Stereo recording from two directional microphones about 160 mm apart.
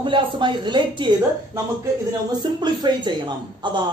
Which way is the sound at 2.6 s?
30° right (ahead or behind).